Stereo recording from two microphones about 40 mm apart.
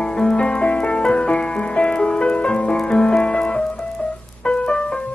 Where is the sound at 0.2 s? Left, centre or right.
Left.